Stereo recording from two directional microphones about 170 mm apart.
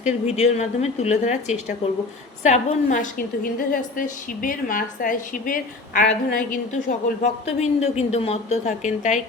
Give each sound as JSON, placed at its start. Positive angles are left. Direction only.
{"t": 0.0, "sound": "a woman's voice", "side_deg": 40}
{"t": 6.8, "sound": "speech", "side_deg": 40}